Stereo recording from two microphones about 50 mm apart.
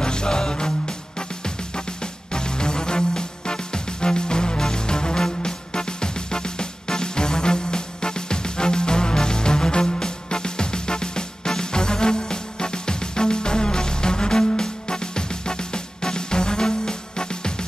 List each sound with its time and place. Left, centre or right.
0.0 s music: centre
2.3 s music: centre